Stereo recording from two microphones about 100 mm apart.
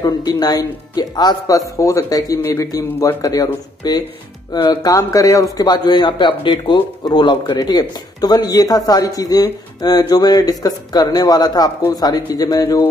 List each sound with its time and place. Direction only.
0.0 s speech: 40° left (ahead or behind)
1.8 s speech: 30° left (ahead or behind)
4.9 s speech: 35° left (ahead or behind)